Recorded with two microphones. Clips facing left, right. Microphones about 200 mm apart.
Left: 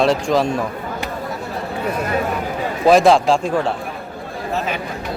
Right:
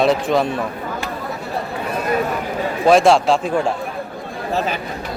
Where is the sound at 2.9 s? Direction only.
Centre (ahead or behind).